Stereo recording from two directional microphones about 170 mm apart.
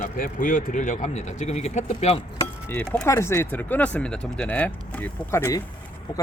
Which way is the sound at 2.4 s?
10° left (ahead or behind).